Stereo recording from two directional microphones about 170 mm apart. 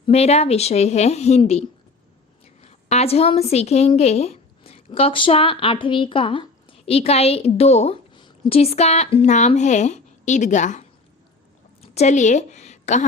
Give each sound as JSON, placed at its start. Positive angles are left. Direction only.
{"t": 0.0, "sound": "a woman's voice", "side_deg": 35}